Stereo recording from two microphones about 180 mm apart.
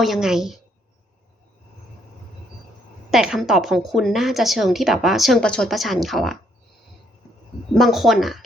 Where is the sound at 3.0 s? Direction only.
5° right (ahead or behind).